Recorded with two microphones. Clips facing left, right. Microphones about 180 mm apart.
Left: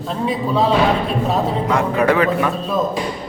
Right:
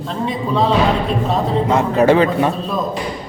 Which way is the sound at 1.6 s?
25° right (ahead or behind).